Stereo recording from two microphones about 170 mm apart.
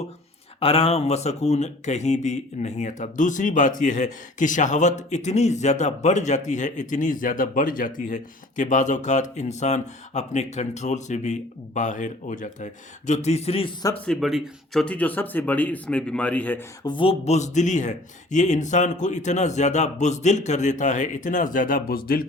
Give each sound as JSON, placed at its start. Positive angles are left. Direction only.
{"t": 0.6, "sound": "a man's voice", "side_deg": 35}
{"t": 14.0, "sound": "speech", "side_deg": 0}
{"t": 16.8, "sound": "speech", "side_deg": 30}